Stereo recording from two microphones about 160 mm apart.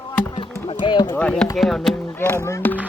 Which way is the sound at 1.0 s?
10° left (ahead or behind).